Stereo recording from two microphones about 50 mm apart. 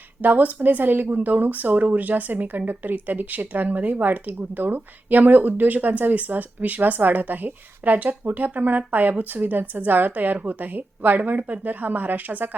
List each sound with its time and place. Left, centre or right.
0.2 s speech: right